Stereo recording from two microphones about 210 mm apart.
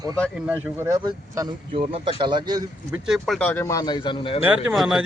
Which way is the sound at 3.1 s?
Centre (ahead or behind).